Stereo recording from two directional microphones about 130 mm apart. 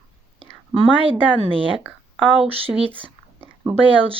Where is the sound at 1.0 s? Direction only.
45° right (ahead or behind).